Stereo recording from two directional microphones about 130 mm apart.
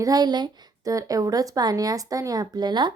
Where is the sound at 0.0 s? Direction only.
30° right (ahead or behind).